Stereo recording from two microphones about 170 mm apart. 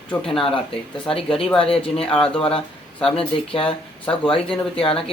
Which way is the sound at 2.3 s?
30° left (ahead or behind).